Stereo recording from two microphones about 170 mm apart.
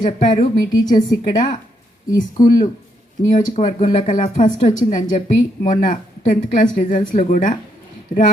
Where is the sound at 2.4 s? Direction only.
50° left (ahead or behind).